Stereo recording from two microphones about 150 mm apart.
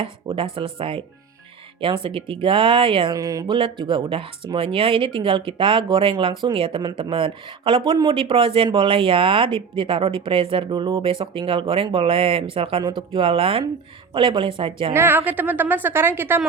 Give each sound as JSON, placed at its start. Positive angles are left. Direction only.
{"t": 0.0, "sound": "a sound", "side_deg": -35}
{"t": 0.5, "sound": "speech", "side_deg": -35}
{"t": 3.2, "sound": "speech", "side_deg": -20}
{"t": 14.9, "sound": "a woman's voice", "side_deg": -15}